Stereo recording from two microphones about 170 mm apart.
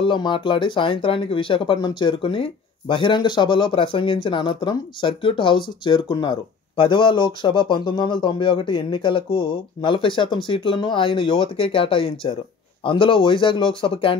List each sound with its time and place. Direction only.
0.0 s speech: 30° left (ahead or behind)